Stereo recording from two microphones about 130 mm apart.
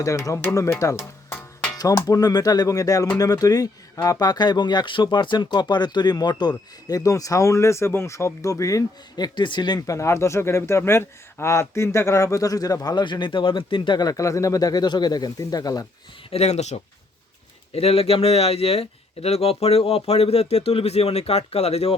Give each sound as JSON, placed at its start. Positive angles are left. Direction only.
{"t": 0.0, "sound": "speech", "side_deg": 25}
{"t": 16.3, "sound": "a man's voice", "side_deg": 55}